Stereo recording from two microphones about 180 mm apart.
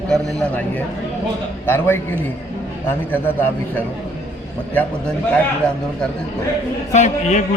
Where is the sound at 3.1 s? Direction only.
10° left (ahead or behind).